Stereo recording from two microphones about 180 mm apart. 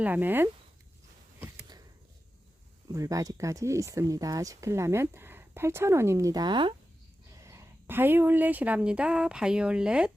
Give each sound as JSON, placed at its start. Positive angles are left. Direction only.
{"t": 0.0, "sound": "speech", "side_deg": -10}
{"t": 1.4, "sound": "a sound", "side_deg": -20}
{"t": 2.9, "sound": "speech", "side_deg": -20}
{"t": 7.3, "sound": "speech", "side_deg": -15}